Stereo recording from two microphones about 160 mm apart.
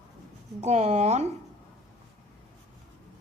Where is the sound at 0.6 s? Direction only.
45° right (ahead or behind).